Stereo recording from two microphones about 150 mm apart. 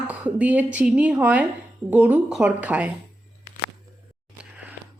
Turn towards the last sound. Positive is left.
turn(degrees=-10)  # may be behind; listen again after turning